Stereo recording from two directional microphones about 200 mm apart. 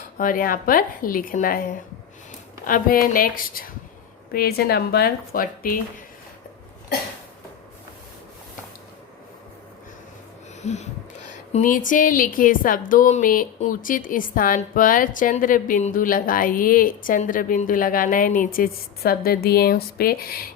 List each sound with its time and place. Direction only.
0.2 s speech: 45° left (ahead or behind)
10.6 s speech: 35° left (ahead or behind)